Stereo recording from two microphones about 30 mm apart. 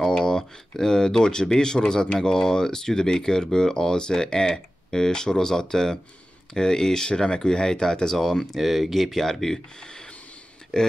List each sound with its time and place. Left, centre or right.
0.0 s speech: left
8.5 s speech: centre
9.8 s a sound: left
10.7 s speech: centre